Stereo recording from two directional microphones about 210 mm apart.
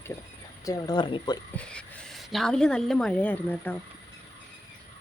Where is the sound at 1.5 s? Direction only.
5° left (ahead or behind).